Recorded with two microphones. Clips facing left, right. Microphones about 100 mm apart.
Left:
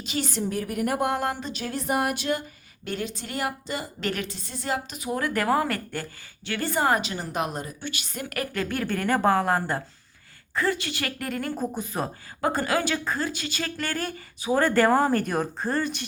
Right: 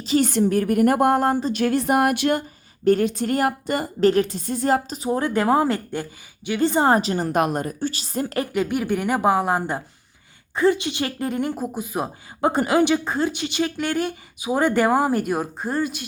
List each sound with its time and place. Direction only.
0.2 s a woman's voice: 60° right (ahead or behind); by 1.5 s 35° right (ahead or behind)
1.5 s speech: 65° right (ahead or behind)
2.8 s a woman's voice: 45° right (ahead or behind)
4.0 s speech: 35° right (ahead or behind); by 7.9 s 55° right (ahead or behind)
7.9 s speech: 35° right (ahead or behind)
11.5 s speech: 5° right (ahead or behind)
12.4 s speech: 20° right (ahead or behind); by 16.0 s 5° right (ahead or behind)